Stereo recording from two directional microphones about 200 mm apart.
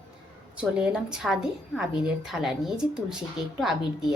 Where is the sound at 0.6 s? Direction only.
5° right (ahead or behind).